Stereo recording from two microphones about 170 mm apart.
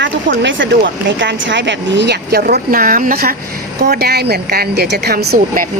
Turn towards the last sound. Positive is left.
turn(degrees=-65)  # may be behind; listen again after turning